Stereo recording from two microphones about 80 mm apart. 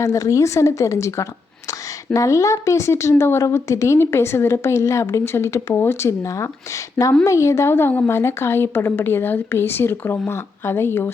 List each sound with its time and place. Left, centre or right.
0.0 s a woman's voice: left